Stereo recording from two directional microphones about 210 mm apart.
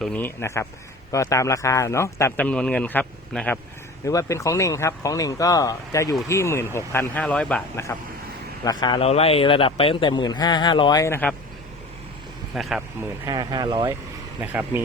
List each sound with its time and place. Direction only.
0.0 s speech: 5° left (ahead or behind)
8.6 s a man's voice: 20° left (ahead or behind)
12.5 s speech: centre (ahead or behind)
13.0 s speech: 15° right (ahead or behind)
14.4 s speech: 10° right (ahead or behind)